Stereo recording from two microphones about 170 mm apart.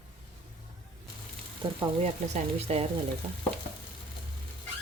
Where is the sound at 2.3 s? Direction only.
35° right (ahead or behind).